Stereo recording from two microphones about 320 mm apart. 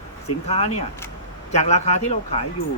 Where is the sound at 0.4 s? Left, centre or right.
Centre.